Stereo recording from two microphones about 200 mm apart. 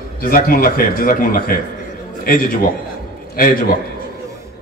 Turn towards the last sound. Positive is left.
turn(degrees=45)  # may be behind; listen again after turning